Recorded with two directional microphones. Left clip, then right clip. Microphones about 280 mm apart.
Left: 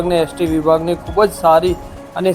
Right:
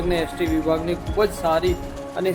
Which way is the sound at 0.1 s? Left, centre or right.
Left.